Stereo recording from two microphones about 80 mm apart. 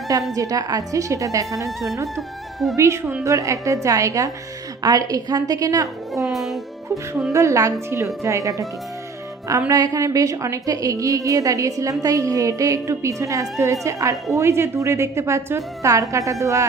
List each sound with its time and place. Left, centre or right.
0.3 s a woman's voice: right
2.7 s a woman's voice: right
6.2 s music: centre
7.3 s a woman's voice: right
9.6 s a woman's voice: right